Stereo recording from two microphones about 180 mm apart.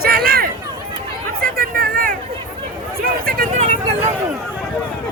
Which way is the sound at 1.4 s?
55° right (ahead or behind).